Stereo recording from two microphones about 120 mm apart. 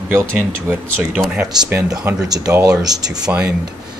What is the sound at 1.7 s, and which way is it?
Speech, 20° right (ahead or behind).